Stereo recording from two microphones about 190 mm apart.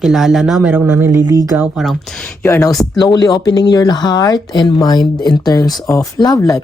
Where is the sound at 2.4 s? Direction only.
15° left (ahead or behind).